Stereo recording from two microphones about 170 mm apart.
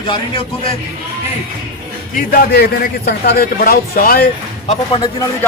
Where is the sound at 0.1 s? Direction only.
30° left (ahead or behind).